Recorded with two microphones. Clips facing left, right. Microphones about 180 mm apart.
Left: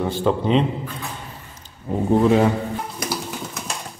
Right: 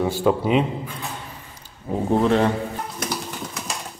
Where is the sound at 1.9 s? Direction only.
Centre (ahead or behind).